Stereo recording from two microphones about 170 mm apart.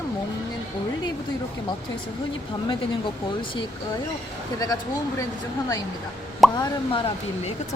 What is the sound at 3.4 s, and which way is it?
Speech, 30° left (ahead or behind).